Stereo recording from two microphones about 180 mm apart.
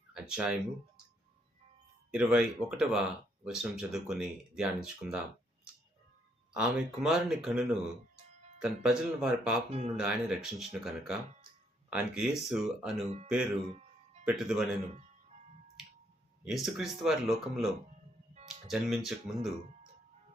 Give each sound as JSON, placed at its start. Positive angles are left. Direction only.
{"t": 0.1, "sound": "a sound", "side_deg": -5}
{"t": 2.1, "sound": "speech", "side_deg": -5}
{"t": 6.5, "sound": "speech", "side_deg": -5}
{"t": 9.6, "sound": "speech", "side_deg": -35}
{"t": 10.0, "sound": "speech", "side_deg": -5}
{"t": 16.4, "sound": "speech", "side_deg": 0}